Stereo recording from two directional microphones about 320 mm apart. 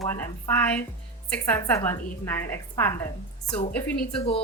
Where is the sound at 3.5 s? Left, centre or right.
Centre.